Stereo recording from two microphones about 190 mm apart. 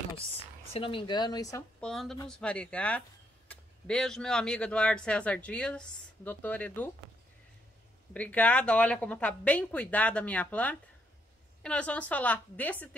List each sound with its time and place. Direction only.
0.7 s speech: 25° left (ahead or behind)
1.8 s speech: 5° left (ahead or behind)
8.1 s speech: 5° left (ahead or behind)